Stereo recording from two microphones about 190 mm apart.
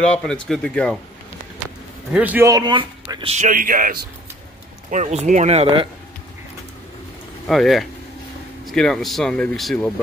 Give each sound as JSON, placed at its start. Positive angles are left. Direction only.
{"t": 0.0, "sound": "speech", "side_deg": 5}
{"t": 2.1, "sound": "a man's voice", "side_deg": -10}
{"t": 7.4, "sound": "speech", "side_deg": 0}